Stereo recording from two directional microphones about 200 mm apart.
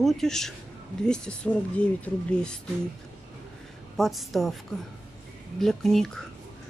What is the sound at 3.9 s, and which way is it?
Speech, centre (ahead or behind).